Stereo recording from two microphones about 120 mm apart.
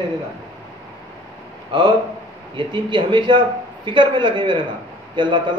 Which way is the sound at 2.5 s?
40° right (ahead or behind).